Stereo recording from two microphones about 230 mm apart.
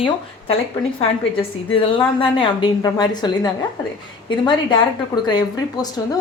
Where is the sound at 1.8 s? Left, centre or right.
Left.